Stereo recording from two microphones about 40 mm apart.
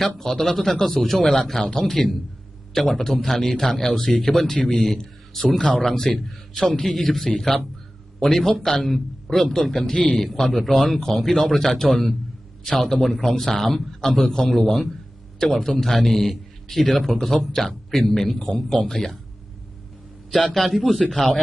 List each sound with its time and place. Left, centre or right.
0.0 s speech: centre
5.5 s a man's voice: centre
6.6 s a man's voice: centre
6.9 s speech: centre
10.0 s a man's voice: left
10.2 s a man's voice: centre
20.3 s a man's voice: centre